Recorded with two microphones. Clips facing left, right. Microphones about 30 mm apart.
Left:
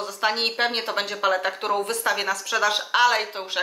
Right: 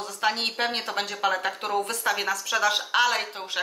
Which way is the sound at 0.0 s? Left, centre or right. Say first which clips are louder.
Left 2 dB; centre.